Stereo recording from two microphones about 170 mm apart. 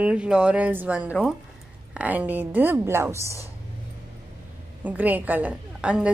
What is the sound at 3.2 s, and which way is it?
Speech, 15° left (ahead or behind).